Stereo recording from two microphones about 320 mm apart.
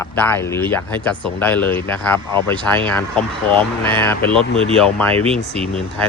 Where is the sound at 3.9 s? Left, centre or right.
Centre.